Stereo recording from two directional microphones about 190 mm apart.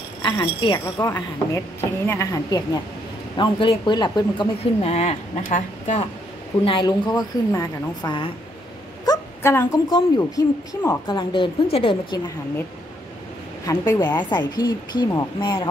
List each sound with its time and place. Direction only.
0.2 s speech: 25° left (ahead or behind); by 6.0 s 40° left (ahead or behind)
6.6 s speech: 25° left (ahead or behind)
13.7 s speech: 20° left (ahead or behind)